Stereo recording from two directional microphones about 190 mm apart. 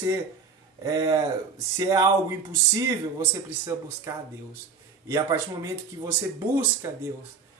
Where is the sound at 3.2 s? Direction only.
10° right (ahead or behind).